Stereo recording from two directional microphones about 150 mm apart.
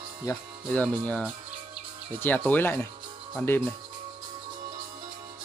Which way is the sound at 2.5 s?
15° left (ahead or behind).